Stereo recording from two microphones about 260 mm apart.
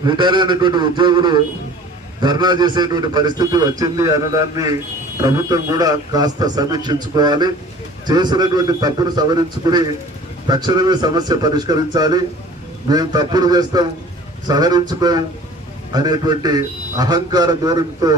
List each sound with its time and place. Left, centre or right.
0.0 s a man's voice: centre